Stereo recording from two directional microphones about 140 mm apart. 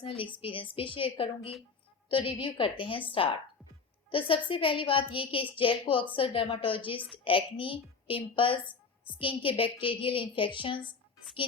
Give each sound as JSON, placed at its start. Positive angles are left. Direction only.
{"t": 0.0, "sound": "a woman's voice", "side_deg": 40}
{"t": 4.1, "sound": "a woman's voice", "side_deg": 40}